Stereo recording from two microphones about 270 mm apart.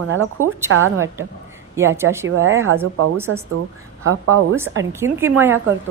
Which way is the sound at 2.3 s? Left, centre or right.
Right.